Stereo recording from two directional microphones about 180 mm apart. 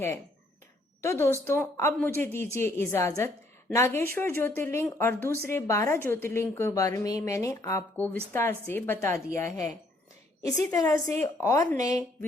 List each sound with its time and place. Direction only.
1.0 s a woman's voice: 15° left (ahead or behind)
10.7 s a woman's voice: 20° left (ahead or behind)